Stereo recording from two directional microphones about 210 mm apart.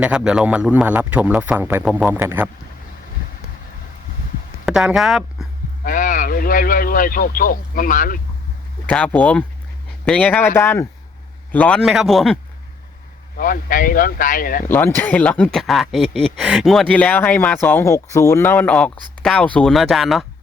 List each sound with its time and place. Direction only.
0.0 s a man's voice: 5° right (ahead or behind)
4.6 s speech: centre (ahead or behind)
5.8 s speech: 40° left (ahead or behind)
8.9 s speech: 5° left (ahead or behind)
13.3 s speech: 40° left (ahead or behind)
14.7 s speech: 10° left (ahead or behind)